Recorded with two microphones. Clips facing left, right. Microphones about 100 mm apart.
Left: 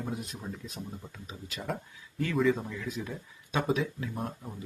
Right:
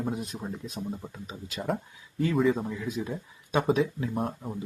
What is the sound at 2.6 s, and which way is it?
Speech, 25° right (ahead or behind).